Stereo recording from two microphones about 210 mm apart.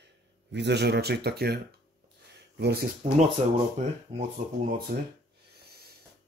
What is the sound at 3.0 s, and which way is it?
Speech, 35° right (ahead or behind).